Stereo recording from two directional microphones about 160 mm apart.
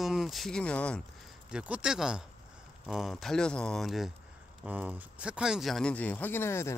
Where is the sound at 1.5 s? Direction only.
5° right (ahead or behind).